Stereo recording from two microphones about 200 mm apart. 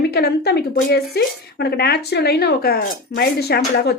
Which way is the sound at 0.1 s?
55° left (ahead or behind).